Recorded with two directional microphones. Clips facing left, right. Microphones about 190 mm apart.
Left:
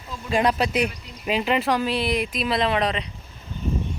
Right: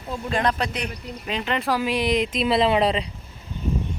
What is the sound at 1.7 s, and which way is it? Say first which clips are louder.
Speech: right 1 dB; 10° right (ahead or behind).